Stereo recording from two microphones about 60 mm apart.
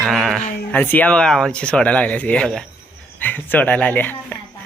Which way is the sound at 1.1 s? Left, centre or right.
Centre.